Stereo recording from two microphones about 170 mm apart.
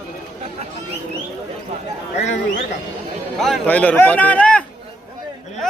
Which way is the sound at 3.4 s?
5° left (ahead or behind).